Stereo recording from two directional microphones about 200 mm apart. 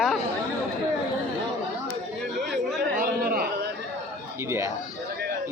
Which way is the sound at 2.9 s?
45° right (ahead or behind).